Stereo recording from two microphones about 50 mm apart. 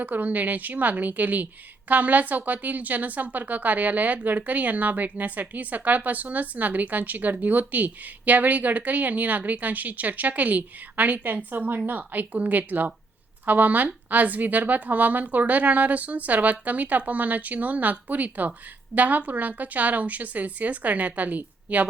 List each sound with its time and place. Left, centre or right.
0.0 s speech: right